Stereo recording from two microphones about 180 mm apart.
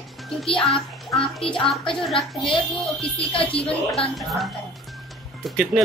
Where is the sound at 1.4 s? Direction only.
30° left (ahead or behind).